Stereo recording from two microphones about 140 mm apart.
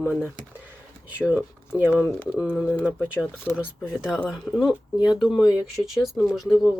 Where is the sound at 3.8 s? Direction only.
5° right (ahead or behind).